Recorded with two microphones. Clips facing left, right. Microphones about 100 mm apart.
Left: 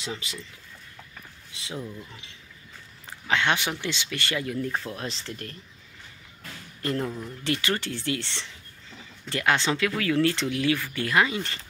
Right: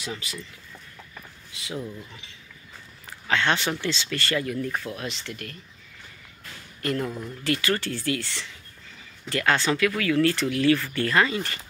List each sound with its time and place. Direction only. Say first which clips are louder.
0.0 s speech: even; 25° left (ahead or behind)
1.5 s speech: right 2 dB; 25° left (ahead or behind)
1.8 s speech: right 2 dB; centre (ahead or behind)
3.1 s speech: right 1 dB; 15° left (ahead or behind); by 5.6 s 35° left (ahead or behind)
6.8 s speech: right 1 dB; 25° left (ahead or behind)